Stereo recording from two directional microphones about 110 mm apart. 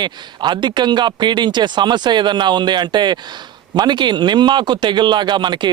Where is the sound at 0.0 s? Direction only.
45° right (ahead or behind).